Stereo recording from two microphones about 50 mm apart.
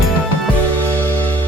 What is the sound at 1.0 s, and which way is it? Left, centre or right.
Music, left.